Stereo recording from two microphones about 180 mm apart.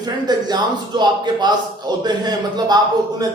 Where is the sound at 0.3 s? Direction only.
25° right (ahead or behind).